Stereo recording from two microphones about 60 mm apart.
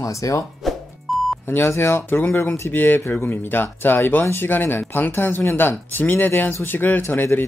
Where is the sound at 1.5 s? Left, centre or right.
Left.